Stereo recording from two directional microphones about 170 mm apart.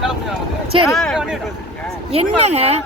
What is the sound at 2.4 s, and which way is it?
Speech, 40° right (ahead or behind).